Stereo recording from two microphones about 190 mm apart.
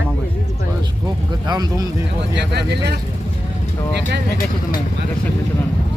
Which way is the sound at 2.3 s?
60° right (ahead or behind).